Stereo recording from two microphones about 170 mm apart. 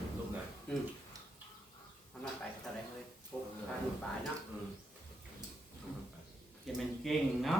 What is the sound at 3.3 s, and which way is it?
Drawer open or close, 15° left (ahead or behind).